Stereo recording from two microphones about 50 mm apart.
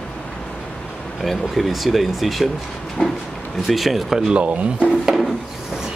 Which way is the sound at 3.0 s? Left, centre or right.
Centre.